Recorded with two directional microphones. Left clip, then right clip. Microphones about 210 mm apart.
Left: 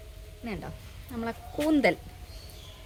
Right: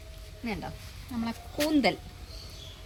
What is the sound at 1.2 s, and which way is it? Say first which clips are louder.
Speech: left 2 dB; 45° left (ahead or behind).